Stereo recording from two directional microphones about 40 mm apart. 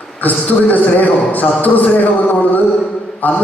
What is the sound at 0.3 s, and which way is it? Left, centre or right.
Speech, left.